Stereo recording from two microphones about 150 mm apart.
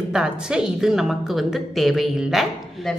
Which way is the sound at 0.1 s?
5° right (ahead or behind).